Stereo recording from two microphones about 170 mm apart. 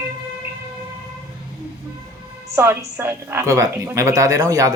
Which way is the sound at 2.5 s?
15° right (ahead or behind).